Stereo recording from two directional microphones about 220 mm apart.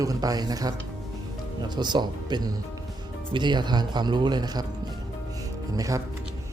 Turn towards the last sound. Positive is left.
turn(degrees=-15)  # may be behind; listen again after turning